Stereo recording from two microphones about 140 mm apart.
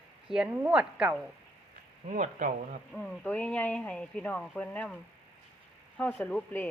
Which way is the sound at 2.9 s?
5° left (ahead or behind).